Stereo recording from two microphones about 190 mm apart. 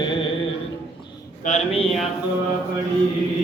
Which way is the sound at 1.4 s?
40° left (ahead or behind).